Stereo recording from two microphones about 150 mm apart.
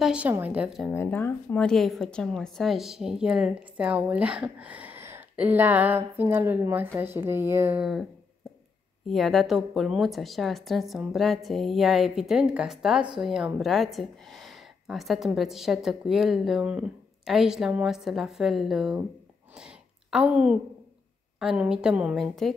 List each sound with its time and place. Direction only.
0.0 s a woman's voice: 10° right (ahead or behind)
0.9 s a woman's voice: 15° left (ahead or behind); by 7.8 s 15° right (ahead or behind)
7.8 s a woman's voice: centre (ahead or behind)
19.6 s a sound: 5° right (ahead or behind)
21.4 s a woman's voice: 5° right (ahead or behind)